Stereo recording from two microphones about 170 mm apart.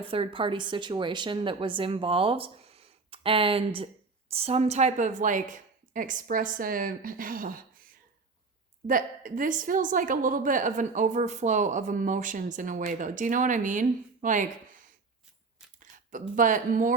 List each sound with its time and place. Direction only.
0.0 s a woman's voice: 30° right (ahead or behind); by 7.6 s 55° right (ahead or behind)
8.9 s a woman's voice: 50° right (ahead or behind)
16.3 s a woman's voice: 50° right (ahead or behind)